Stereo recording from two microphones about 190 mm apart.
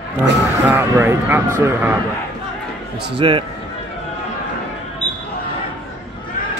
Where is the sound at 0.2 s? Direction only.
10° right (ahead or behind).